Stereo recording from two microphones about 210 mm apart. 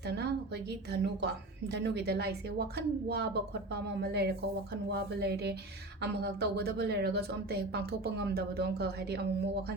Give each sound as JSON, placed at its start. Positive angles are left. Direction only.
{"t": 0.0, "sound": "a woman's voice", "side_deg": -50}